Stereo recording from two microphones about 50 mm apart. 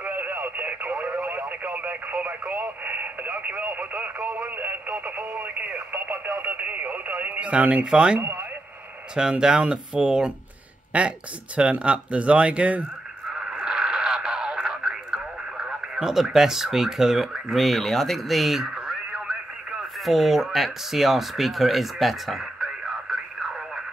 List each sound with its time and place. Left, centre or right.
0.0 s radio: right
7.8 s speech: centre
8.2 s speech: right
9.1 s speech: centre
13.4 s radio: centre